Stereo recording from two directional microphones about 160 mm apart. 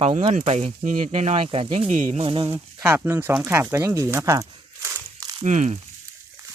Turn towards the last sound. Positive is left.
turn(degrees=-50)  # may be behind; listen again after turning